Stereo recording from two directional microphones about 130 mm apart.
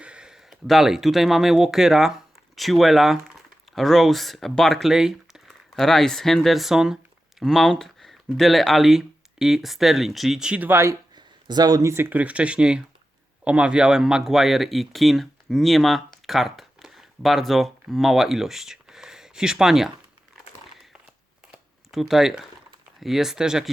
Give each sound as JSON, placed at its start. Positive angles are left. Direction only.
{"t": 0.0, "sound": "speech", "side_deg": -5}
{"t": 11.1, "sound": "speech", "side_deg": -35}
{"t": 21.4, "sound": "a sound", "side_deg": -5}
{"t": 23.0, "sound": "speech", "side_deg": 0}